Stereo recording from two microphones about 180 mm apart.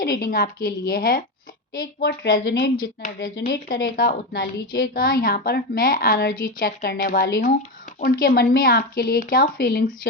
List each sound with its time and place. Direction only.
0.0 s a woman's voice: 55° left (ahead or behind)
3.0 s a woman's voice: 50° left (ahead or behind)
3.3 s a woman's voice: 65° left (ahead or behind)